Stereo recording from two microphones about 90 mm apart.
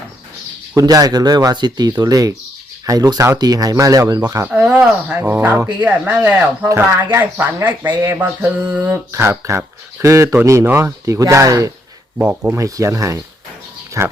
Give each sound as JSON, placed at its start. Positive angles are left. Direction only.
{"t": 0.8, "sound": "speech", "side_deg": -45}
{"t": 4.5, "sound": "speech", "side_deg": -15}
{"t": 6.7, "sound": "speech", "side_deg": -35}
{"t": 7.2, "sound": "a sound", "side_deg": -20}
{"t": 8.7, "sound": "speech", "side_deg": -20}
{"t": 12.2, "sound": "speech", "side_deg": -15}
{"t": 12.5, "sound": "speech", "side_deg": -35}